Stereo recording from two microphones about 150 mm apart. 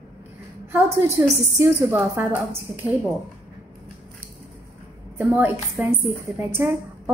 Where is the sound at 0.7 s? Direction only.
15° right (ahead or behind).